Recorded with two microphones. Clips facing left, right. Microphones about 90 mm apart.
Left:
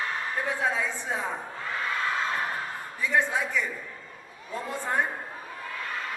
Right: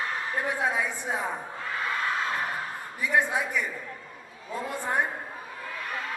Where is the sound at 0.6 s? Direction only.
15° right (ahead or behind).